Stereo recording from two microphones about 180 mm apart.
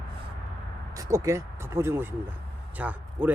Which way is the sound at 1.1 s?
15° right (ahead or behind).